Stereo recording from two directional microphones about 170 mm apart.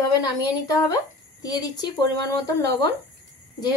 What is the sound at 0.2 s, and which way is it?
Speech, 20° left (ahead or behind).